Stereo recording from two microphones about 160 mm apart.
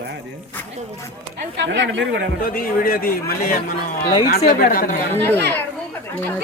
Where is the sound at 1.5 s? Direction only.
90° right.